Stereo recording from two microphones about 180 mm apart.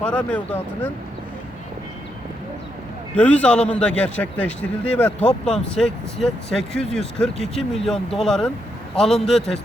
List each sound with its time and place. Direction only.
0.0 s a man's voice: 5° left (ahead or behind)
3.2 s a man's voice: 5° left (ahead or behind)